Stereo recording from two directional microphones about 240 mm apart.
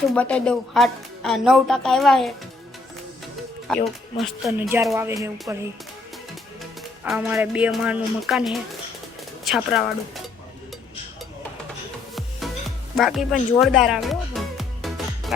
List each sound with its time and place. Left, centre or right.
0.1 s speech: centre
3.7 s speech: centre
7.0 s speech: centre
12.1 s music: centre